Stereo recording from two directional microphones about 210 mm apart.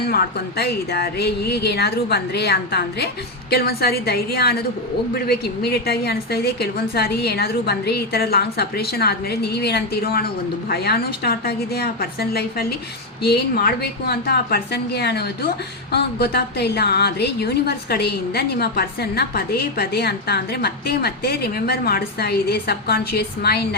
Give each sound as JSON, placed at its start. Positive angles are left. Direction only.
{"t": 0.1, "sound": "a woman's voice", "side_deg": 50}